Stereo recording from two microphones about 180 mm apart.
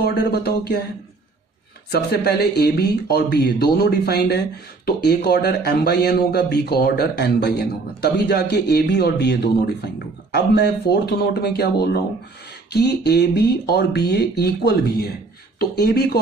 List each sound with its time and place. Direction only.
0.0 s speech: 65° left (ahead or behind)
1.9 s speech: 60° left (ahead or behind)